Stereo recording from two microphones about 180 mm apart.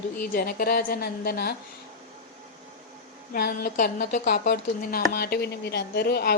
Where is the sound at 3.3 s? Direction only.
55° left (ahead or behind).